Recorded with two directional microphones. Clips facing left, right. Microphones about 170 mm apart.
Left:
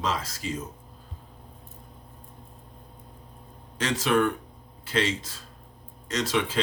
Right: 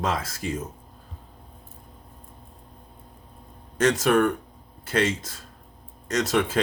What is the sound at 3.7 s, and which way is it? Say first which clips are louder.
Speech: right 4 dB; 45° right (ahead or behind).